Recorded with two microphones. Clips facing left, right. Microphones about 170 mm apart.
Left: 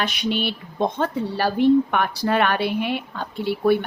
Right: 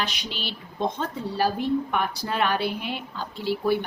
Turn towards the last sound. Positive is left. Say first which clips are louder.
# left 5 dB
turn(degrees=60)  # may be behind; listen again after turning